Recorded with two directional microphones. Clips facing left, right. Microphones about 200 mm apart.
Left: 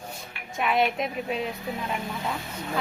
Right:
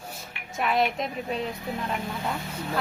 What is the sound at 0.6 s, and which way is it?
Speech, centre (ahead or behind).